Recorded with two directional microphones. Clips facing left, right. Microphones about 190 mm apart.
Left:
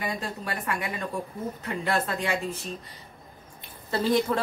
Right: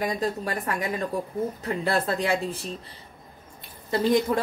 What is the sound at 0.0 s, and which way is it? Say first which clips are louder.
A woman's voice: right 5 dB; 40° right (ahead or behind).